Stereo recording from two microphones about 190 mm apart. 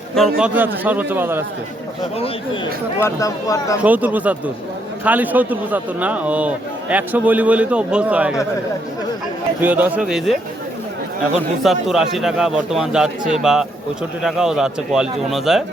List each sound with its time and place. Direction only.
0.2 s a man's voice: centre (ahead or behind)
2.1 s speech: 30° left (ahead or behind)
3.0 s speech: 15° left (ahead or behind)
3.8 s a man's voice: 10° right (ahead or behind)
9.6 s a man's voice: 10° right (ahead or behind)
11.6 s a man's voice: centre (ahead or behind)